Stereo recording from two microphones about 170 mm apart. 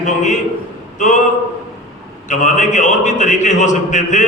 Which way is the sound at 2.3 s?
45° left (ahead or behind).